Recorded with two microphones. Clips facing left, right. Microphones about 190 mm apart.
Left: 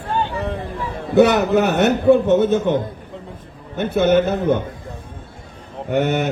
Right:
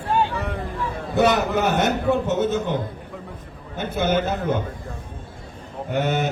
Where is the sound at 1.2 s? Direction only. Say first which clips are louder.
Left 6 dB; 65° left (ahead or behind).